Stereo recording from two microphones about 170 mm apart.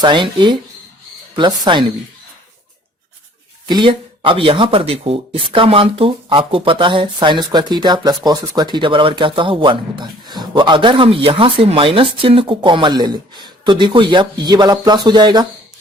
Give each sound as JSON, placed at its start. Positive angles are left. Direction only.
{"t": 0.0, "sound": "speech", "side_deg": -30}
{"t": 3.7, "sound": "speech", "side_deg": -30}